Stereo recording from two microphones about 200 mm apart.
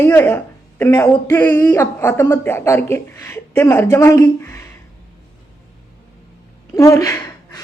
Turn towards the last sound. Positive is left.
turn(degrees=15)  # may be behind; listen again after turning